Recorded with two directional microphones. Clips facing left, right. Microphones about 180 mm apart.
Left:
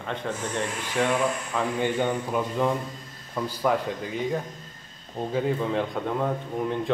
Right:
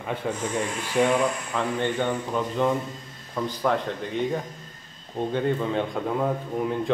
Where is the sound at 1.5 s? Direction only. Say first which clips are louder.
Even; 10° left (ahead or behind).